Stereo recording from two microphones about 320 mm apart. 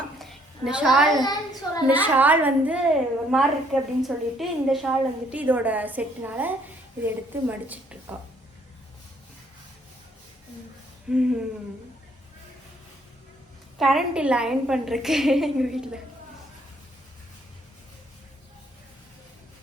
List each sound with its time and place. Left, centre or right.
0.2 s a sound: centre
1.2 s a child's voice: centre
1.9 s a woman's voice: centre
11.1 s a woman's voice: centre
13.7 s a woman's voice: centre